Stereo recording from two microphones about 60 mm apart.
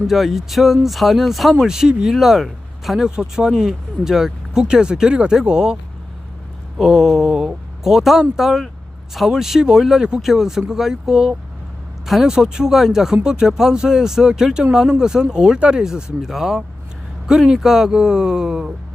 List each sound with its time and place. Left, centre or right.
0.1 s speech: centre
6.7 s speech: centre